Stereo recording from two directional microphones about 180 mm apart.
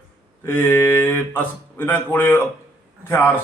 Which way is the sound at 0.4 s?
10° left (ahead or behind).